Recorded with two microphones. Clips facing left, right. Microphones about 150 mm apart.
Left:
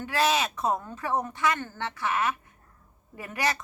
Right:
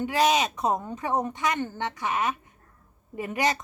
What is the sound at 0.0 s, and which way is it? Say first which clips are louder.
A woman's voice: right 3 dB; 20° right (ahead or behind).